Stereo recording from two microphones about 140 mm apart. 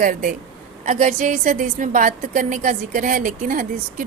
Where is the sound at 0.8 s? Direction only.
55° right (ahead or behind).